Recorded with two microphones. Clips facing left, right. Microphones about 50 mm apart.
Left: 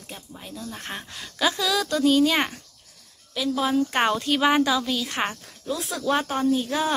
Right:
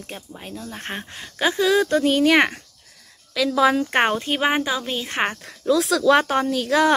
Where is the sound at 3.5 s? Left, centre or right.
Right.